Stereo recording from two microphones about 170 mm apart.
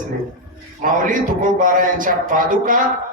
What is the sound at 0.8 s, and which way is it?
Speech, 50° right (ahead or behind).